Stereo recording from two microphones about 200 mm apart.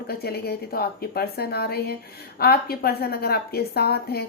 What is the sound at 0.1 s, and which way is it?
A woman's voice, 50° left (ahead or behind).